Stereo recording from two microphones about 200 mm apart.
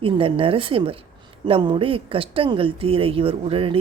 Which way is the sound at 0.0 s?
25° right (ahead or behind).